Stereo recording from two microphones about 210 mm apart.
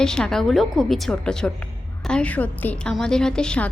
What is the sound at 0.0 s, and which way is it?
A woman's voice, 5° left (ahead or behind).